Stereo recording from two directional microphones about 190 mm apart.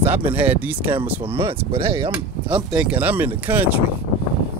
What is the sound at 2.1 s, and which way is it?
Speech, 5° right (ahead or behind).